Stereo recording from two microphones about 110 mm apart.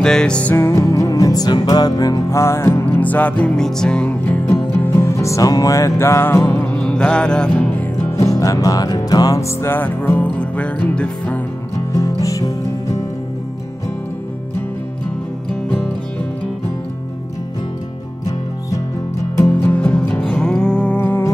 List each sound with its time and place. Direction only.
0.0 s music: 5° left (ahead or behind)
0.6 s music: 25° left (ahead or behind); by 4.1 s 5° left (ahead or behind)
4.3 s music: 25° left (ahead or behind)
8.1 s music: 30° left (ahead or behind); by 11.4 s 10° left (ahead or behind)
11.9 s music: 30° left (ahead or behind)
19.3 s music: 25° left (ahead or behind)
19.7 s music: 10° left (ahead or behind)